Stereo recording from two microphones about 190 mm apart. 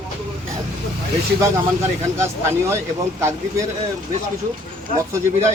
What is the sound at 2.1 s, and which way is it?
Speech, 15° right (ahead or behind).